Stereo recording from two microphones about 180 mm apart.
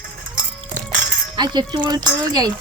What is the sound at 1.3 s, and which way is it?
Speech, 25° right (ahead or behind).